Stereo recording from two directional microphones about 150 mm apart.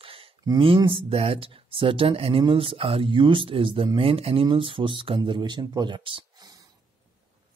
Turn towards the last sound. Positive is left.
turn(degrees=-30)  # may be behind; listen again after turning